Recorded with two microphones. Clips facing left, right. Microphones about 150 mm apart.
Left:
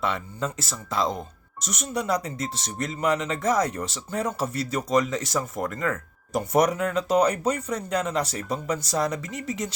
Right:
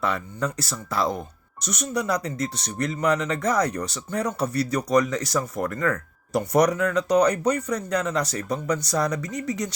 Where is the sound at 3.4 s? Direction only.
25° left (ahead or behind).